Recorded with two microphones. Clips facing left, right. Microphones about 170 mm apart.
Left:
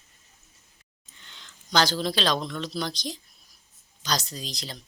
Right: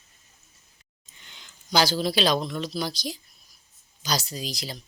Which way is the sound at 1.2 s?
15° right (ahead or behind).